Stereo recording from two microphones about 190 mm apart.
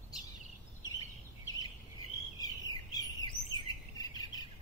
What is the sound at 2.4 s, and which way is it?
Bird, 20° left (ahead or behind).